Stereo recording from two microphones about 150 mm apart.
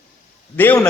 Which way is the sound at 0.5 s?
10° left (ahead or behind).